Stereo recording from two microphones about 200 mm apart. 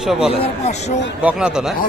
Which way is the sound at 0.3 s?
30° left (ahead or behind).